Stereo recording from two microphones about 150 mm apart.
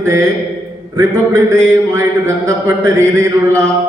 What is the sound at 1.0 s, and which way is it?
Speech, 20° right (ahead or behind).